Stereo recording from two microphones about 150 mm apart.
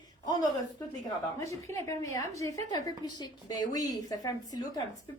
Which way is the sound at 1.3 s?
20° left (ahead or behind).